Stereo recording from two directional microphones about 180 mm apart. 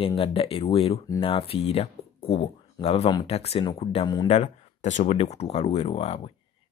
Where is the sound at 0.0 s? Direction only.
30° left (ahead or behind).